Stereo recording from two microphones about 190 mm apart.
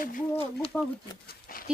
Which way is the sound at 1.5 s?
50° left (ahead or behind).